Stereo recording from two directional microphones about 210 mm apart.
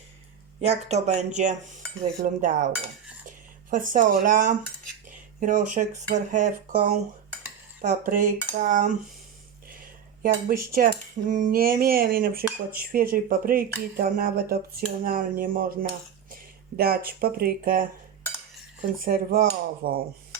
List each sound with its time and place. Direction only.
0.6 s speech: 30° right (ahead or behind)
10.2 s speech: 45° right (ahead or behind)
19.0 s speech: 45° right (ahead or behind)